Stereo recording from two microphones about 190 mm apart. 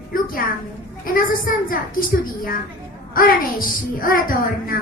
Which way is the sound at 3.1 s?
50° left (ahead or behind).